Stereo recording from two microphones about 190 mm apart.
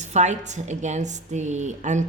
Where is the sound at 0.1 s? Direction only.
40° right (ahead or behind).